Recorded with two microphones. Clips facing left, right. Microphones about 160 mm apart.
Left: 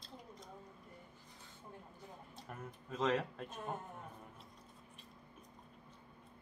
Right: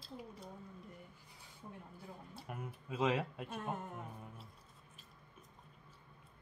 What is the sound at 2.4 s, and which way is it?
Speech, 10° right (ahead or behind).